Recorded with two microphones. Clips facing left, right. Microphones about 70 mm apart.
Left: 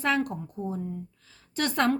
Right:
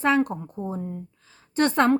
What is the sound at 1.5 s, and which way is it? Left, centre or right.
Speech, right.